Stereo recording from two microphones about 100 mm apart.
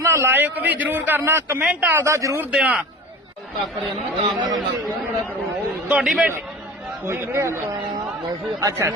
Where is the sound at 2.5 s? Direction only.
10° right (ahead or behind).